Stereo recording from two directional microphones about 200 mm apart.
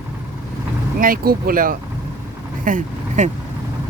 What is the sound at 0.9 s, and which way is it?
Speech, 45° right (ahead or behind).